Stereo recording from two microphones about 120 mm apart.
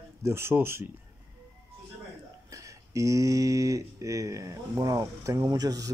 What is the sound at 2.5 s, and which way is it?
Speech, 25° right (ahead or behind).